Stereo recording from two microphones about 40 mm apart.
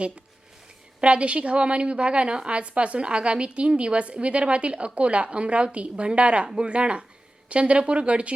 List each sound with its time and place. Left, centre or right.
1.0 s a woman's voice: right